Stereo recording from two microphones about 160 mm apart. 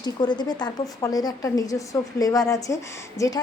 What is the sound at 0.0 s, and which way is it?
A woman's voice, 25° left (ahead or behind).